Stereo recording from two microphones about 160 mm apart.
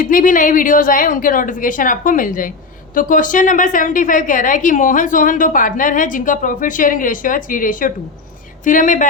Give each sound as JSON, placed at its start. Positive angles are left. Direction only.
{"t": 0.0, "sound": "a woman's voice", "side_deg": 60}